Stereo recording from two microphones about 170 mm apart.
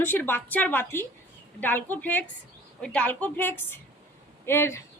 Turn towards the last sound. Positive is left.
turn(degrees=15)  # may be behind; listen again after turning